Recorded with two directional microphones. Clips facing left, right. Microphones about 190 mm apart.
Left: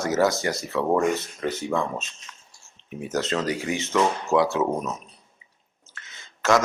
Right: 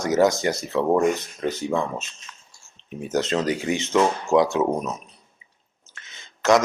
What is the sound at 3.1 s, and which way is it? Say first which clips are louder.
Speech: right 3 dB; 20° right (ahead or behind).